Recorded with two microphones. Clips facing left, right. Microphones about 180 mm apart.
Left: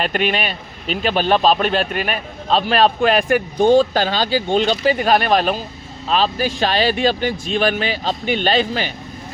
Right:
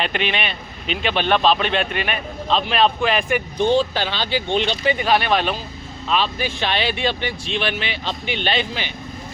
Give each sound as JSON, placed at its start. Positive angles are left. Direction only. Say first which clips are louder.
{"t": 0.0, "sound": "speech", "louder": "left 3 dB", "side_deg": 45}